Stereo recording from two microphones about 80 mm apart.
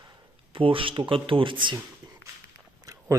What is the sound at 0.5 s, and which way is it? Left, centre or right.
Speech, right.